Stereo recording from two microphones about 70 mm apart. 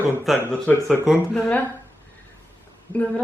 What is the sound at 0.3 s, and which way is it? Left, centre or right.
Speech, centre.